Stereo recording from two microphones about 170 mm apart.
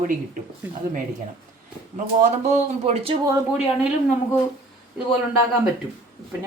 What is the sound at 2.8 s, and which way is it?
Speech, 35° right (ahead or behind).